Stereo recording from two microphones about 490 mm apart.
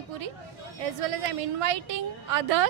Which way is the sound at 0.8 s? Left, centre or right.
Right.